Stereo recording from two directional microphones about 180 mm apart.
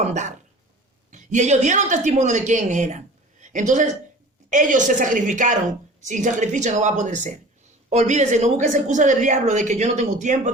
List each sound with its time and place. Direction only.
0.0 s a woman's voice: 40° right (ahead or behind)